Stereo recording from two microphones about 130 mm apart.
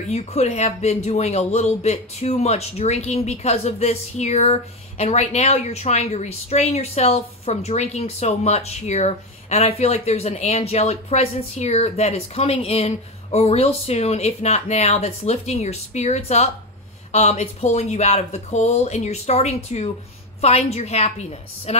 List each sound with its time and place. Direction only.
0.1 s a man's voice: 55° left (ahead or behind)